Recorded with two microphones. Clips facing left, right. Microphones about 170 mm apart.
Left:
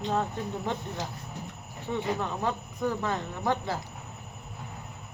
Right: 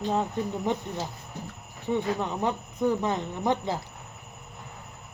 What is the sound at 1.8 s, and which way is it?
Speech, 15° right (ahead or behind).